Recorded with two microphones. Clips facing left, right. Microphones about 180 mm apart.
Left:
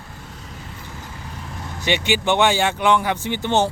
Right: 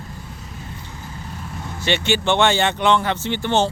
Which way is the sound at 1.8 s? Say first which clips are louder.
Even; 15° left (ahead or behind).